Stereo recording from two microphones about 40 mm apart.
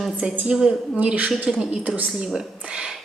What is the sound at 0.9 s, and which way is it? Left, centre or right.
Speech, right.